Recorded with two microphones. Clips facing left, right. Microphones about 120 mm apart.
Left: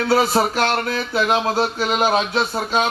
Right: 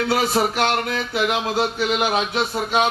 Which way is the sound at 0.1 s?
30° left (ahead or behind).